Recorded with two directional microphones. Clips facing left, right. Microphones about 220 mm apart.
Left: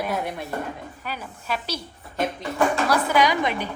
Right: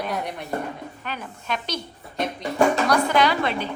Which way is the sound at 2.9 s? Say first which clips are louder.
Right 1 dB; 10° left (ahead or behind).